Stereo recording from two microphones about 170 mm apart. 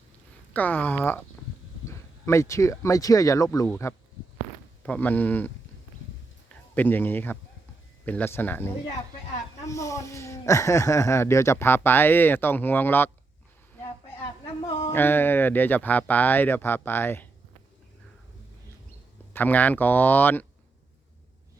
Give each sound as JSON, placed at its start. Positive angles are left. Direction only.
{"t": 0.5, "sound": "speech", "side_deg": 10}
{"t": 6.5, "sound": "speech", "side_deg": 10}
{"t": 14.9, "sound": "speech", "side_deg": 10}
{"t": 19.3, "sound": "speech", "side_deg": 10}